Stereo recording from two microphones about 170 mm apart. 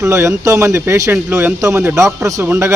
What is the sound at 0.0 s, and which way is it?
Speech, 15° right (ahead or behind).